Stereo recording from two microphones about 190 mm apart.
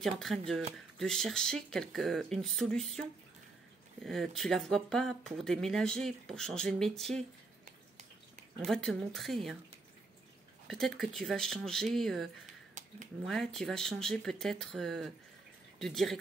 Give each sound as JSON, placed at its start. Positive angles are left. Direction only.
{"t": 0.0, "sound": "speech", "side_deg": 0}
{"t": 4.0, "sound": "speech", "side_deg": 0}
{"t": 8.6, "sound": "speech", "side_deg": 0}
{"t": 10.7, "sound": "speech", "side_deg": 0}
{"t": 12.8, "sound": "a sound", "side_deg": -40}
{"t": 13.2, "sound": "speech", "side_deg": 0}